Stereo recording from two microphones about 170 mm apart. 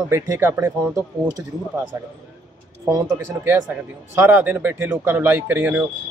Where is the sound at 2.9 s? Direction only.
15° right (ahead or behind).